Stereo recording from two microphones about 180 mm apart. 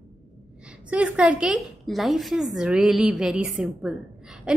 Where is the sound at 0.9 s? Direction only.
5° right (ahead or behind).